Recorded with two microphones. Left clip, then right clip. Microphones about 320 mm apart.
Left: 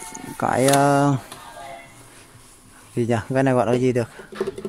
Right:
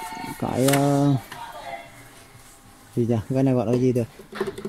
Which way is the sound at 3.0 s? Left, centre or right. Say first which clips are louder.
Left 3 dB; left.